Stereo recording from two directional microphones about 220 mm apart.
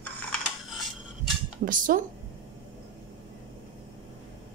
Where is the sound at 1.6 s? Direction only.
40° right (ahead or behind).